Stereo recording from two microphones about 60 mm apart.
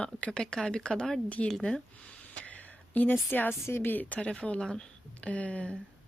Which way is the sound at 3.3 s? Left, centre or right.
Left.